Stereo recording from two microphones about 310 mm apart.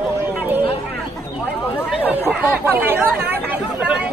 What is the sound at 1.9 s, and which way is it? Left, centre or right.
Speech, centre.